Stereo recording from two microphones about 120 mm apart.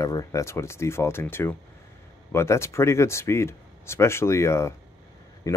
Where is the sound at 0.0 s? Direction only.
30° left (ahead or behind).